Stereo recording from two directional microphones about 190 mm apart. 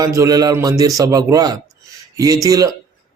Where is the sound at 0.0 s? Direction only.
20° right (ahead or behind).